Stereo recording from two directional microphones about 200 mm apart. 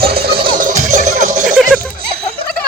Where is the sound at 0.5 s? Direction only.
40° right (ahead or behind).